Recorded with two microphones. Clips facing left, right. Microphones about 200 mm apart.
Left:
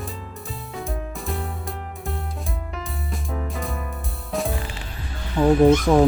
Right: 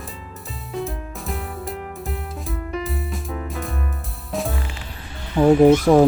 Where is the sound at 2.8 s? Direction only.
Centre (ahead or behind).